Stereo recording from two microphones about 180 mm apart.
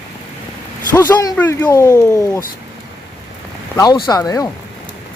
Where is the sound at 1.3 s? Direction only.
10° left (ahead or behind).